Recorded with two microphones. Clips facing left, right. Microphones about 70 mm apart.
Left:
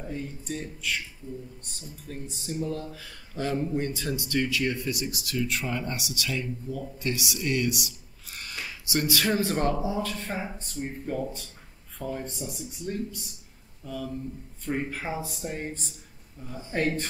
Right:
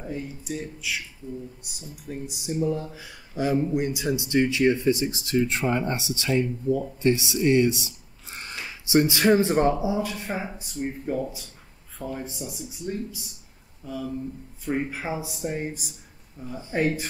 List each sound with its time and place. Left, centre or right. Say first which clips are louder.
0.0 s speech: right 2 dB; centre